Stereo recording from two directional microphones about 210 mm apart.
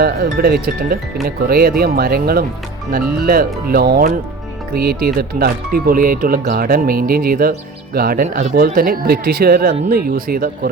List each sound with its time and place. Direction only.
0.0 s speech: 45° right (ahead or behind)